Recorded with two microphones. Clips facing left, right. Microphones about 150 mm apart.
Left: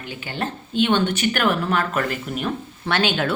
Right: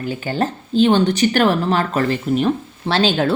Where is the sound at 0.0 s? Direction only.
40° right (ahead or behind).